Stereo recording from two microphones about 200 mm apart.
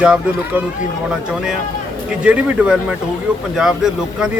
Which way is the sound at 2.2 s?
5° right (ahead or behind).